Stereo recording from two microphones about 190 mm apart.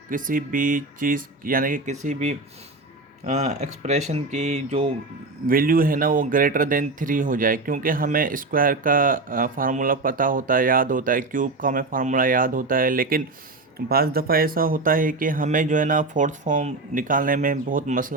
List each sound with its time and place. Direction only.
0.1 s speech: 45° right (ahead or behind)
5.5 s speech: 50° right (ahead or behind)